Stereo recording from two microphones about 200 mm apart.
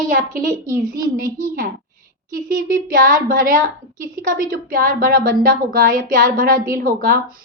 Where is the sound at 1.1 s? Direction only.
45° right (ahead or behind).